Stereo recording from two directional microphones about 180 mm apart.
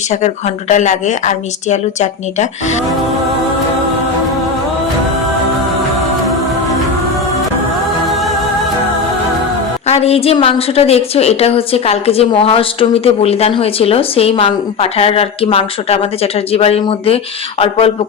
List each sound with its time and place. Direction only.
0.1 s a woman's voice: 40° left (ahead or behind)
9.8 s a woman's voice: 35° left (ahead or behind)